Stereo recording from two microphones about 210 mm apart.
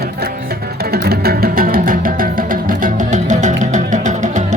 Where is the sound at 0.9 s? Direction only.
50° right (ahead or behind).